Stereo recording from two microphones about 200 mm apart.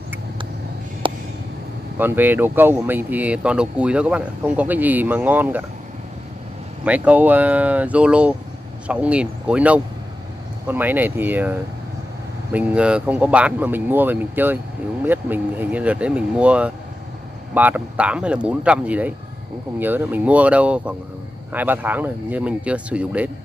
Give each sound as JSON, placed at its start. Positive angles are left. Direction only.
{"t": 1.0, "sound": "a sound", "side_deg": -25}
{"t": 2.0, "sound": "speech", "side_deg": -10}
{"t": 6.8, "sound": "speech", "side_deg": -5}
{"t": 12.5, "sound": "speech", "side_deg": -5}